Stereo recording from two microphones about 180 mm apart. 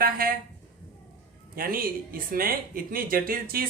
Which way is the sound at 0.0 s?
55° right (ahead or behind).